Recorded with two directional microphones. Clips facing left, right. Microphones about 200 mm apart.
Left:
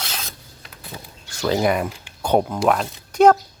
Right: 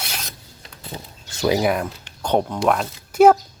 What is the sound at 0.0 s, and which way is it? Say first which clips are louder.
Filing: even; 10° right (ahead or behind).